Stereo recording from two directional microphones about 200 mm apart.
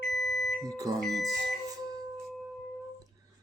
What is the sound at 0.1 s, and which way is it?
Smoke detector, centre (ahead or behind).